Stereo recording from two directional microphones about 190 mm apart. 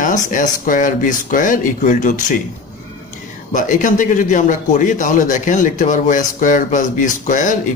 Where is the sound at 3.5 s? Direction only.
40° left (ahead or behind).